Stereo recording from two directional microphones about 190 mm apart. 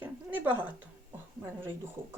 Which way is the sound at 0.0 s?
10° right (ahead or behind).